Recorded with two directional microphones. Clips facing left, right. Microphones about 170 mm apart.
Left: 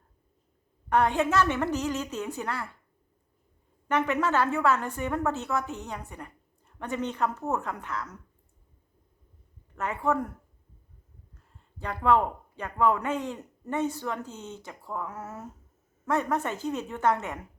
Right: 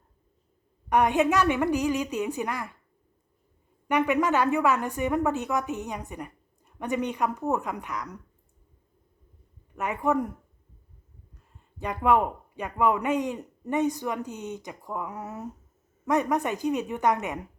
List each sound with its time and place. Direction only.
0.9 s a woman's voice: 15° right (ahead or behind)
3.8 s a woman's voice: 15° right (ahead or behind)
9.7 s a woman's voice: 15° right (ahead or behind)
11.8 s a woman's voice: 15° right (ahead or behind)